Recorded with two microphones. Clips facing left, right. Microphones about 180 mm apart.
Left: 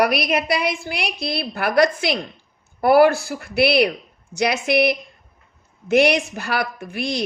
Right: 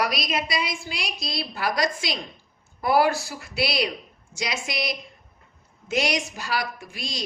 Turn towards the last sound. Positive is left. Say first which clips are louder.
# left 10 dB
turn(degrees=60)  # may be behind; listen again after turning